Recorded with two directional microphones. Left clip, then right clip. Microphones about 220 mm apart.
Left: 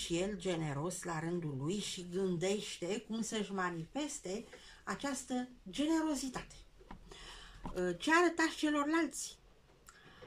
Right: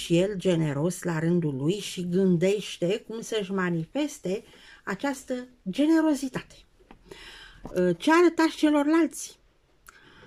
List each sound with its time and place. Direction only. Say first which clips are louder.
0.0 s speech: right 13 dB; 45° right (ahead or behind)